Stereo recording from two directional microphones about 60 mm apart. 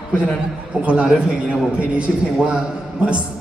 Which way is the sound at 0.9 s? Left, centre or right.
Right.